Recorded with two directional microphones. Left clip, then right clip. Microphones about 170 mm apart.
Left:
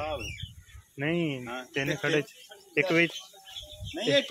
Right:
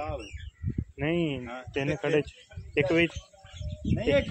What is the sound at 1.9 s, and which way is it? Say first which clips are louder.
Speech: right 2 dB; 25° right (ahead or behind).